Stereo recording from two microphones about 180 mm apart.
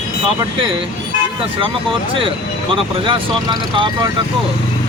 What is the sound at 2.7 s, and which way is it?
Speech, 30° right (ahead or behind).